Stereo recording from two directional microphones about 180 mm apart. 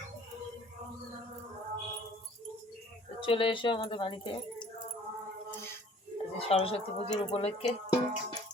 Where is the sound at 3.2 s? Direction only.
30° left (ahead or behind).